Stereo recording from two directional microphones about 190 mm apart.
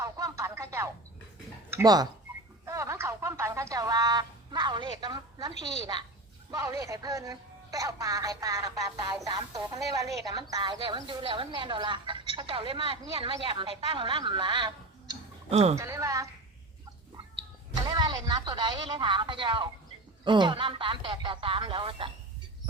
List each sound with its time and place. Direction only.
0.0 s music: 15° right (ahead or behind)
1.7 s speech: 20° right (ahead or behind)
2.6 s a sound: 15° right (ahead or behind)
6.5 s a woman's voice: 20° right (ahead or behind); by 15.8 s 35° right (ahead or behind)
15.8 s speech: 15° right (ahead or behind)
17.7 s a woman's voice: 25° right (ahead or behind)